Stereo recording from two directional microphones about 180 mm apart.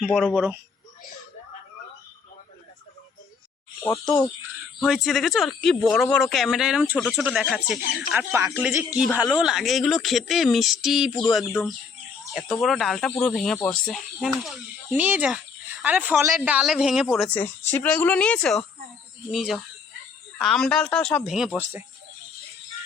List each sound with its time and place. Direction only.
0.0 s speech: centre (ahead or behind)
3.8 s a woman's voice: 10° left (ahead or behind)
7.8 s speech: 55° left (ahead or behind)
8.3 s speech: 15° right (ahead or behind); by 11.3 s centre (ahead or behind)
12.3 s speech: centre (ahead or behind)
17.7 s a woman's voice: 10° left (ahead or behind)
21.6 s speech: 10° right (ahead or behind)